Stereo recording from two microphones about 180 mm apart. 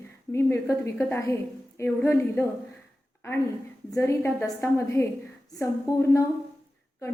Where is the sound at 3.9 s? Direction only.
15° left (ahead or behind).